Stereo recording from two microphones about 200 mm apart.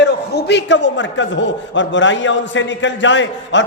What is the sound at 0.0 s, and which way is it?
A man's voice, 55° left (ahead or behind).